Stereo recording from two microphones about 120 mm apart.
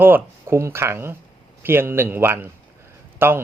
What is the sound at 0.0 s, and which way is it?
Speech, 15° right (ahead or behind).